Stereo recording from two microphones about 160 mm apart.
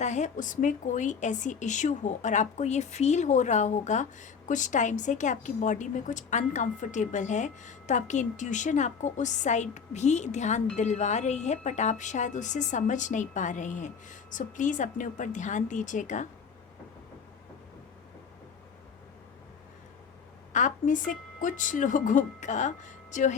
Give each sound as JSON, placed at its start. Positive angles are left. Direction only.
{"t": 0.0, "sound": "a woman's voice", "side_deg": 45}
{"t": 20.5, "sound": "a woman's voice", "side_deg": 55}